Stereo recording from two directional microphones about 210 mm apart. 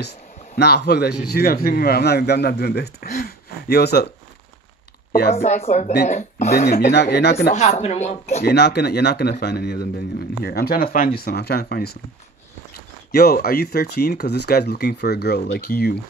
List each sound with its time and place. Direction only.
0.6 s a man's voice: 50° left (ahead or behind)
5.3 s speech: 30° left (ahead or behind)
6.5 s speech: 45° left (ahead or behind)
7.5 s speech: 30° left (ahead or behind)
8.5 s speech: 50° left (ahead or behind)
13.1 s speech: 45° left (ahead or behind)